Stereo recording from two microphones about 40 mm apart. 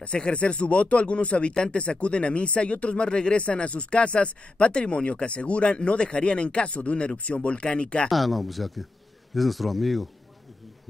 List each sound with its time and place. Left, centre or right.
0.0 s speech: left
8.1 s speech: centre